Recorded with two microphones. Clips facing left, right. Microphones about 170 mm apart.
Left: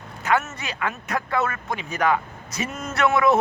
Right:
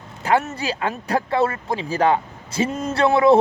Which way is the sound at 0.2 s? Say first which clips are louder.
Right 3 dB; 30° right (ahead or behind).